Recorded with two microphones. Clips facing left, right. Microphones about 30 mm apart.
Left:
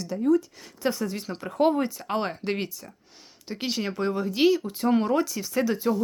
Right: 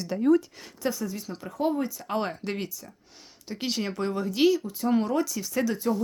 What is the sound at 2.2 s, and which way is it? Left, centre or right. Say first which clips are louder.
Speech: left 2 dB; centre.